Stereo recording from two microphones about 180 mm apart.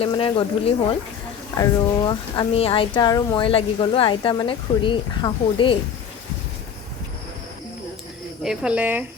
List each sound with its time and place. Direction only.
0.0 s speech: 25° left (ahead or behind)
8.4 s speech: 5° right (ahead or behind)